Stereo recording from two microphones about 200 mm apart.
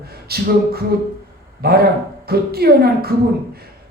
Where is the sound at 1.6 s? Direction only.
50° right (ahead or behind).